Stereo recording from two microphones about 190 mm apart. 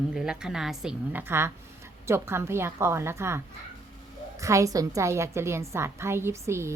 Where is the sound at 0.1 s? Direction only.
5° right (ahead or behind).